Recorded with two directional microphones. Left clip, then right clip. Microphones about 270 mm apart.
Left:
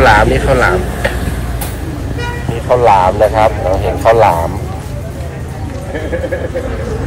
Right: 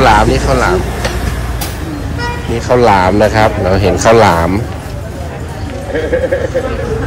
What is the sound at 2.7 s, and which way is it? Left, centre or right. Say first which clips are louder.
Speech: even; right.